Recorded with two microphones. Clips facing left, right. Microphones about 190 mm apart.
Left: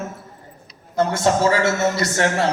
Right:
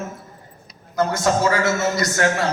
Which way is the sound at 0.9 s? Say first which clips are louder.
Left 1 dB; 30° left (ahead or behind).